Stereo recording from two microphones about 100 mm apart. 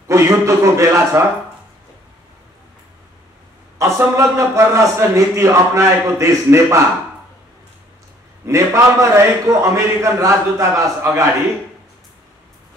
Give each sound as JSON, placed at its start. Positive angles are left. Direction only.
{"t": 0.1, "sound": "a sound", "side_deg": -30}
{"t": 3.7, "sound": "a man's voice", "side_deg": -30}
{"t": 8.5, "sound": "a man's voice", "side_deg": -30}